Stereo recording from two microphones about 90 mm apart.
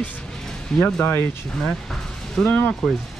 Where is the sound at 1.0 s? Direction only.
25° left (ahead or behind).